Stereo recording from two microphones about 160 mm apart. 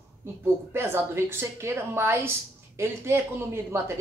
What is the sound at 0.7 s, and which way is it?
Speech, 15° right (ahead or behind).